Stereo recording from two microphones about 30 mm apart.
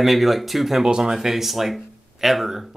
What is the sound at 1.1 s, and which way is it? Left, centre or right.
Speech, centre.